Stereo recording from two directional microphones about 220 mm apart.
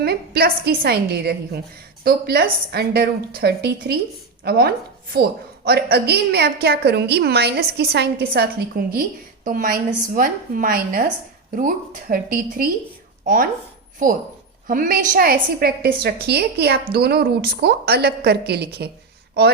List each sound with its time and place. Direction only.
0.0 s a woman's voice: 45° right (ahead or behind)